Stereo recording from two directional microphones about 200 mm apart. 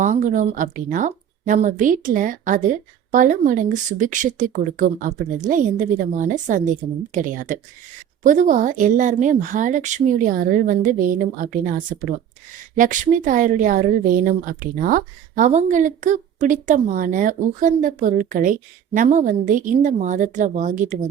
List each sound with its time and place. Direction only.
0.0 s speech: 40° right (ahead or behind)
12.7 s speech: 40° right (ahead or behind)